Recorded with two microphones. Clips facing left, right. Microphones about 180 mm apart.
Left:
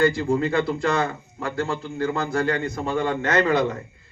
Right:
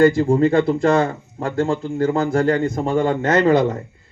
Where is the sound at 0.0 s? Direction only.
45° right (ahead or behind).